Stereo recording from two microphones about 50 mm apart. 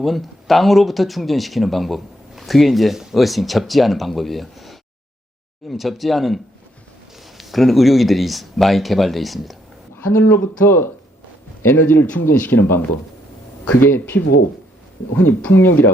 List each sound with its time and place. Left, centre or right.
0.0 s speech: centre
9.9 s speech: left
13.8 s speech: left
15.2 s speech: left